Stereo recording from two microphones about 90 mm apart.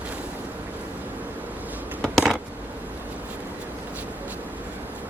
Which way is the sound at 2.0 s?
5° right (ahead or behind).